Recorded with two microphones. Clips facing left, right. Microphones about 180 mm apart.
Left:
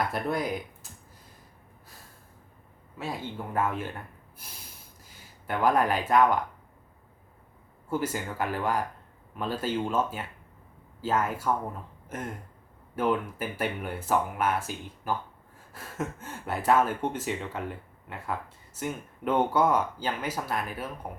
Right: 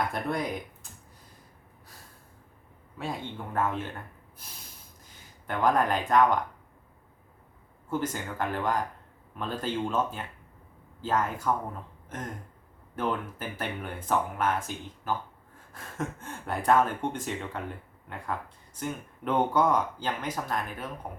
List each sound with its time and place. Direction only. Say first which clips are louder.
0.1 s speech: left 1 dB; 5° left (ahead or behind)
3.0 s speech: even; 5° left (ahead or behind)
5.5 s speech: left 1 dB; 5° left (ahead or behind)
7.9 s speech: left 1 dB; 10° left (ahead or behind)
12.0 s a sound: left 2 dB; 10° left (ahead or behind)
13.0 s speech: left 4 dB; 10° left (ahead or behind)